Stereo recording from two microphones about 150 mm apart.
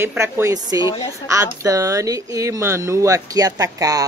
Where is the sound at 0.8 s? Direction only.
30° left (ahead or behind).